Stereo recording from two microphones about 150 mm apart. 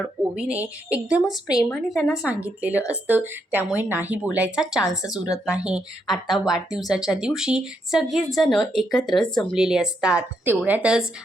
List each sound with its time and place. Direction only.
0.2 s speech: 10° right (ahead or behind)
5.0 s a woman's voice: 25° left (ahead or behind)
5.5 s speech: 5° right (ahead or behind)